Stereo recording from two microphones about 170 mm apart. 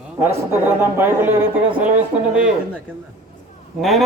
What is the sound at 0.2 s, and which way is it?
A man's voice, 15° right (ahead or behind).